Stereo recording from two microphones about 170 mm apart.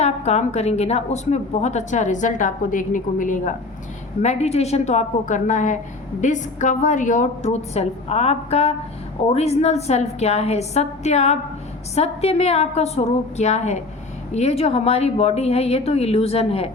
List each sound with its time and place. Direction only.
0.0 s a woman's voice: 40° left (ahead or behind)
4.2 s a woman's voice: 40° left (ahead or behind)